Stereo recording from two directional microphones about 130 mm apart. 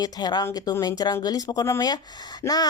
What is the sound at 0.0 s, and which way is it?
Speech, 30° left (ahead or behind).